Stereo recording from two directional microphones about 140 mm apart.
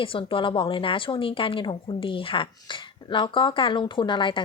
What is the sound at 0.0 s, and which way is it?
A woman's voice, 40° left (ahead or behind).